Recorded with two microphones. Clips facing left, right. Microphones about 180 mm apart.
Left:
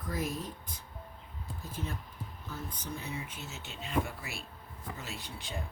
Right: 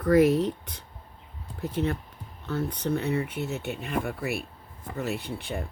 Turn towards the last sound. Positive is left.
turn(degrees=-60)  # may be behind; listen again after turning